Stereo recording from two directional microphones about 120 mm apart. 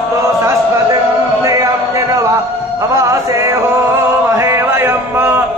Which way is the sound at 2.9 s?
25° right (ahead or behind).